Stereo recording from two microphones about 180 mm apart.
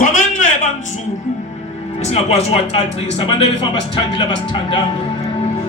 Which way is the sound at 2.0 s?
40° left (ahead or behind).